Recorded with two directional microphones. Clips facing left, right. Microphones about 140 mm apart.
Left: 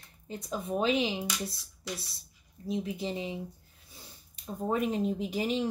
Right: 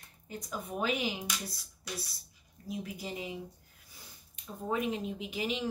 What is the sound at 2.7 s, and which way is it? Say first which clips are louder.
Speech: left 6 dB; 25° left (ahead or behind).